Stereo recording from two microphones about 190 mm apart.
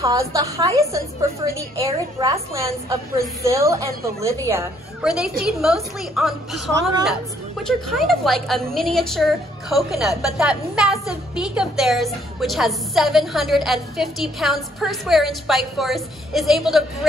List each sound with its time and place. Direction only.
0.0 s a woman's voice: 15° right (ahead or behind)
5.0 s a woman's voice: 5° right (ahead or behind)
7.6 s a woman's voice: centre (ahead or behind)